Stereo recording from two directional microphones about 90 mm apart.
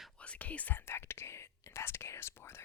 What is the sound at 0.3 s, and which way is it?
Whispering, 15° left (ahead or behind).